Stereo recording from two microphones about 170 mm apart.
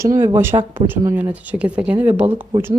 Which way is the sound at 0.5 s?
30° right (ahead or behind).